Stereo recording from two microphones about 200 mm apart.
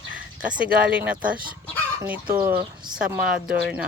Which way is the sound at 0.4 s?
5° right (ahead or behind).